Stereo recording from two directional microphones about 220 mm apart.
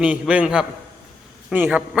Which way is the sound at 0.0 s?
5° right (ahead or behind).